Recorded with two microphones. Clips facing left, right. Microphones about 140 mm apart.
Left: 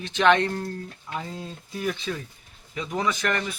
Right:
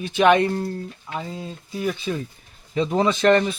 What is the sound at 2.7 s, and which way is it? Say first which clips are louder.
Speech: right 7 dB; 30° right (ahead or behind).